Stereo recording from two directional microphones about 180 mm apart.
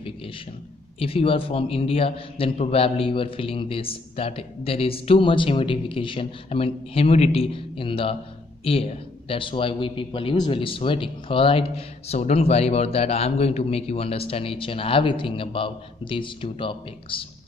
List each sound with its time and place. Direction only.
0.9 s a man's voice: 30° left (ahead or behind)